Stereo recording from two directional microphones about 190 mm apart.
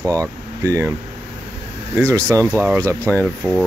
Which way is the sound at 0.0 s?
15° right (ahead or behind).